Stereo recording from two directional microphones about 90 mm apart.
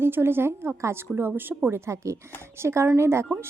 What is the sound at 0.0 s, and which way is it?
A woman's voice, 25° right (ahead or behind).